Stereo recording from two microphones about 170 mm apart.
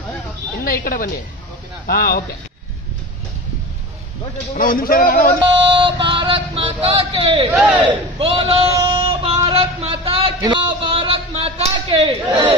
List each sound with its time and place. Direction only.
0.7 s a man's voice: 55° left (ahead or behind)
4.6 s a man's voice: 60° left (ahead or behind)
5.4 s a sound: 30° right (ahead or behind)
7.5 s speech: centre (ahead or behind)
7.8 s speech: 35° right (ahead or behind)
8.7 s a sound: 30° right (ahead or behind)